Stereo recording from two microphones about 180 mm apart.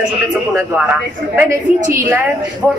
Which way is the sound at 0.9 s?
10° right (ahead or behind).